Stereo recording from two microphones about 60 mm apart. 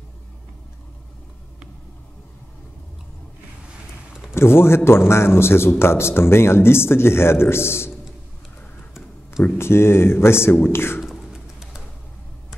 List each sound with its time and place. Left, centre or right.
4.3 s a man's voice: left
9.6 s a man's voice: left
11.3 s pigeon: centre